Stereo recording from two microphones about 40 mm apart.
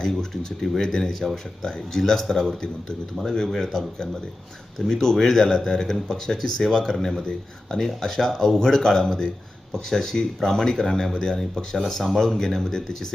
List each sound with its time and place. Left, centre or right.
0.0 s speech: centre
3.5 s speech: centre
5.7 s speech: centre